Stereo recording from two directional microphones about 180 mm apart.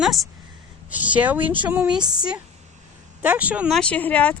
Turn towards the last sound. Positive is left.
turn(degrees=10)  # may be behind; listen again after turning